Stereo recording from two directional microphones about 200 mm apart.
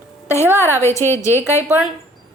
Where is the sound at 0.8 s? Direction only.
15° left (ahead or behind).